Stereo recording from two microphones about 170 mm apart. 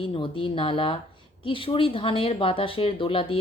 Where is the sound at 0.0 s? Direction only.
30° left (ahead or behind).